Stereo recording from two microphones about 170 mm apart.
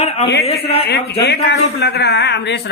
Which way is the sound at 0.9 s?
75° left (ahead or behind).